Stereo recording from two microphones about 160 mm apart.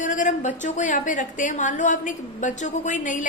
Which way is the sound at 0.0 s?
55° left (ahead or behind).